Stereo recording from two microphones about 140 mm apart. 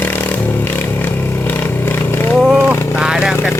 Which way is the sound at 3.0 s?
5° right (ahead or behind).